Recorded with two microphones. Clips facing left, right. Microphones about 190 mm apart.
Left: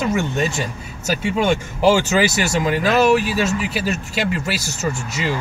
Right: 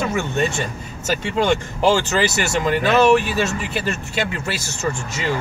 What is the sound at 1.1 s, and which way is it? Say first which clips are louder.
Speech: even; 10° left (ahead or behind).